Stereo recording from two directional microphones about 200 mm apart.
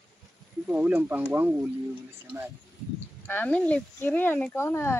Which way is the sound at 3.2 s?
10° left (ahead or behind).